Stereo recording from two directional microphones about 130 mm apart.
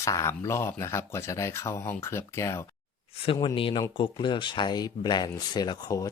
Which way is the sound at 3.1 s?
45° left (ahead or behind).